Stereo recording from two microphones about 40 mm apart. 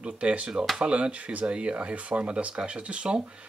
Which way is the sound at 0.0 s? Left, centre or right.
Right.